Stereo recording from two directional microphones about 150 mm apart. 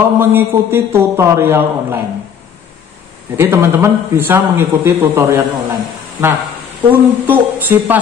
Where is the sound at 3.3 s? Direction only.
15° right (ahead or behind).